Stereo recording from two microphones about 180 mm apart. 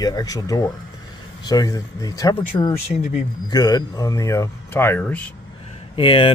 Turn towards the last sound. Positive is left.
turn(degrees=30)  # may be behind; listen again after turning